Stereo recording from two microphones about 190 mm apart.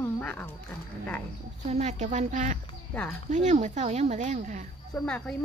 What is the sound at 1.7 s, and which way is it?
Speech, 35° right (ahead or behind).